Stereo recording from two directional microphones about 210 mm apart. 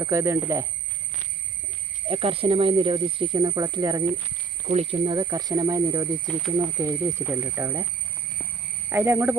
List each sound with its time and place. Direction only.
0.0 s speech: 15° right (ahead or behind)
2.0 s speech: 25° right (ahead or behind)
4.6 s speech: 30° right (ahead or behind); by 6.1 s 15° right (ahead or behind)
6.3 s speech: 5° left (ahead or behind)
6.7 s speech: 15° right (ahead or behind)
8.9 s speech: 10° right (ahead or behind)